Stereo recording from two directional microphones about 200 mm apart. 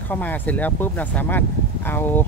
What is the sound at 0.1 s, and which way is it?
Speech, 10° left (ahead or behind).